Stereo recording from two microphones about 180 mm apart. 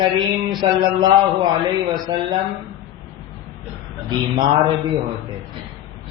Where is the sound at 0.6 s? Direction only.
25° right (ahead or behind).